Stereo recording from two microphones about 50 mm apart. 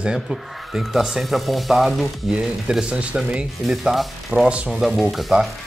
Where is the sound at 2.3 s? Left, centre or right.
Centre.